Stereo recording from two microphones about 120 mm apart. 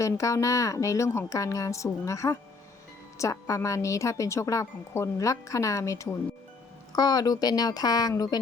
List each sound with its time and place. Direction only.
0.0 s a woman's voice: 25° left (ahead or behind)